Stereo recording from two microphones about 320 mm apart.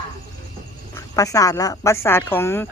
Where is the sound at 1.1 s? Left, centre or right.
Centre.